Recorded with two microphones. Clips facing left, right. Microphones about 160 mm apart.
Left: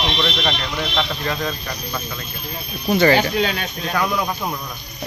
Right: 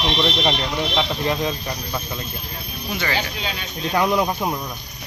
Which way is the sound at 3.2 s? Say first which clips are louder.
Left 8 dB; 60° left (ahead or behind).